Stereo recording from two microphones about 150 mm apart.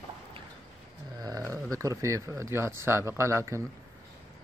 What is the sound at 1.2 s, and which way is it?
Speech, 25° right (ahead or behind).